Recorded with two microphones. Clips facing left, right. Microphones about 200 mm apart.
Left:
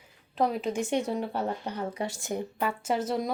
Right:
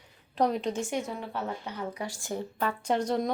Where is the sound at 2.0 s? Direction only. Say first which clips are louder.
Left 3 dB; 20° left (ahead or behind).